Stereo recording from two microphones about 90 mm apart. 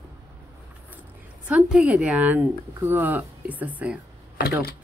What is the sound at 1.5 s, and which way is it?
A woman's voice, 10° right (ahead or behind).